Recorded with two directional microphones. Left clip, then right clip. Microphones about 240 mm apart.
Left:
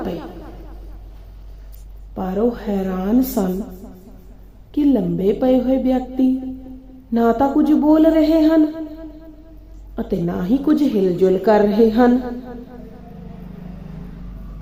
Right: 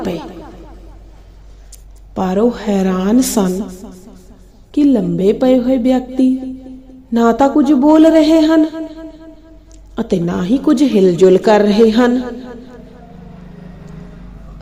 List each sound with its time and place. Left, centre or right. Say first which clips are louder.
0.0 s speech: right 5 dB; right
2.1 s a woman's voice: right 6 dB; right